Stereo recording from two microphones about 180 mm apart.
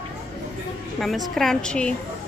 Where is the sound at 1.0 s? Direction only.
Centre (ahead or behind).